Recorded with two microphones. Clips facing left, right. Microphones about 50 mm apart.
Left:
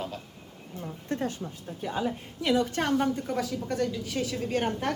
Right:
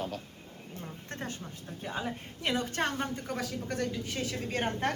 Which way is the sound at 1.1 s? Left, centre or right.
Right.